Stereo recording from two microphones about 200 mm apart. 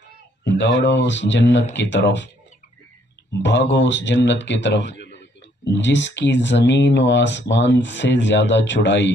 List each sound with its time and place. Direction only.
0.4 s speech: 60° left (ahead or behind)
3.7 s speech: 65° left (ahead or behind)